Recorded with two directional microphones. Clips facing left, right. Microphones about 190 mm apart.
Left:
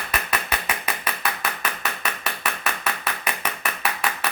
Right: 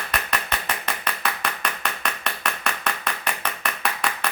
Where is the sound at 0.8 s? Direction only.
5° left (ahead or behind).